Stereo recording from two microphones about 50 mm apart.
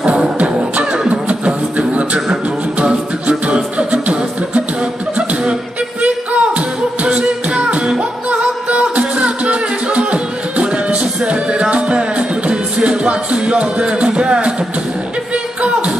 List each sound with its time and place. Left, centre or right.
0.4 s beatboxing: right
2.8 s music: right